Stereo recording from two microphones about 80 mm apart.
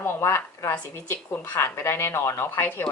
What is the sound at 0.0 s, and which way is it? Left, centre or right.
Speech, left.